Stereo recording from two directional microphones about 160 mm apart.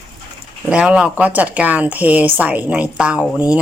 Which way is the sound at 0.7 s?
5° right (ahead or behind).